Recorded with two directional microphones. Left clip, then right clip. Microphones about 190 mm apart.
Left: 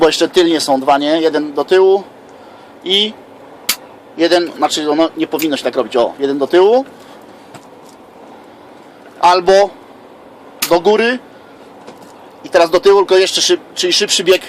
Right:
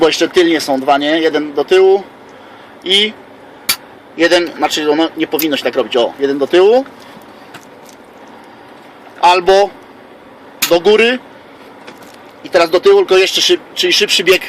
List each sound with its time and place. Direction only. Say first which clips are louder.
0.0 s speech: even; centre (ahead or behind)
4.2 s speech: right 1 dB; 5° right (ahead or behind)
9.2 s speech: even; centre (ahead or behind)
10.7 s speech: right 2 dB; 5° right (ahead or behind)
12.4 s speech: even; centre (ahead or behind)